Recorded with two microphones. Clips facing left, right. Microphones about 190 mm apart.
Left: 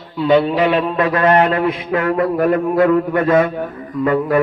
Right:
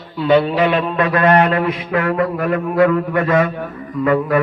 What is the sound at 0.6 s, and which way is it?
Mantra, 25° left (ahead or behind).